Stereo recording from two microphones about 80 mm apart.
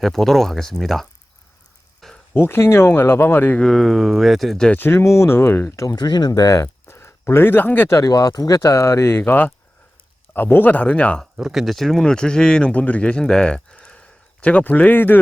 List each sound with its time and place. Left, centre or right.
0.0 s speech: centre
2.3 s speech: left
3.6 s speech: centre
4.7 s speech: left
6.0 s speech: left
7.9 s speech: left; by 11.2 s centre
11.3 s speech: centre; by 15.2 s left